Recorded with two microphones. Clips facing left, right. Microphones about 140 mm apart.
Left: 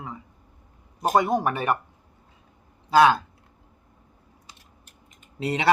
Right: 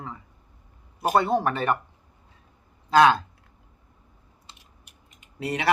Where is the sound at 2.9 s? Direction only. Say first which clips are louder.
Even; 5° left (ahead or behind).